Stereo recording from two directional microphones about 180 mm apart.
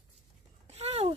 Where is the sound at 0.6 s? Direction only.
35° right (ahead or behind).